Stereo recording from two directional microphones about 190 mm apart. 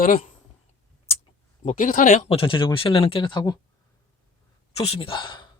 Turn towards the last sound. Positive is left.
turn(degrees=25)  # may be behind; listen again after turning